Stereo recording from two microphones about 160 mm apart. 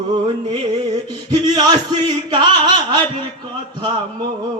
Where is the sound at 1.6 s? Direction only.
25° right (ahead or behind).